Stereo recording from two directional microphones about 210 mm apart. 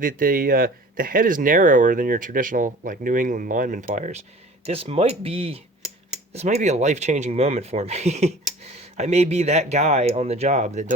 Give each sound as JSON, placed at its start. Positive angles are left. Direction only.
{"t": 0.0, "sound": "speech", "side_deg": -40}